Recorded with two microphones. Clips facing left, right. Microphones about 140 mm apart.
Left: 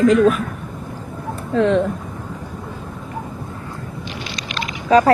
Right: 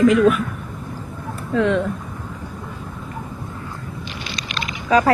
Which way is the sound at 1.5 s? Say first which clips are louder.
Left 2 dB; 35° left (ahead or behind).